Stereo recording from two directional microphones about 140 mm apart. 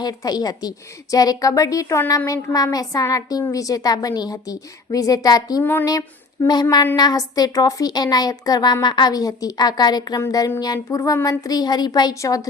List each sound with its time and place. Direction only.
0.0 s a woman's voice: 25° left (ahead or behind)